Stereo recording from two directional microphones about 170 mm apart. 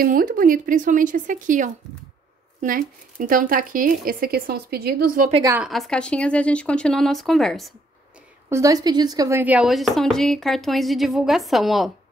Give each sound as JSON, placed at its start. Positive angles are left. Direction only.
{"t": 0.0, "sound": "a woman's voice", "side_deg": -55}
{"t": 5.6, "sound": "a woman's voice", "side_deg": 0}
{"t": 8.5, "sound": "a woman's voice", "side_deg": -20}
{"t": 9.4, "sound": "a woman's voice", "side_deg": -5}